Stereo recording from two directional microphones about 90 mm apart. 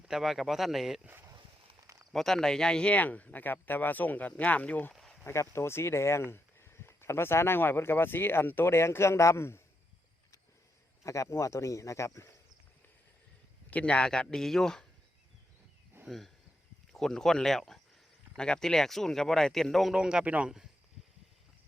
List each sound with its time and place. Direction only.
0.1 s speech: 5° right (ahead or behind)
1.0 s speech: 25° right (ahead or behind)
2.1 s speech: 5° left (ahead or behind)
5.2 s speech: 30° left (ahead or behind)
11.0 s speech: 35° left (ahead or behind)
13.7 s speech: 15° left (ahead or behind)
16.0 s speech: centre (ahead or behind); by 20.5 s 15° right (ahead or behind)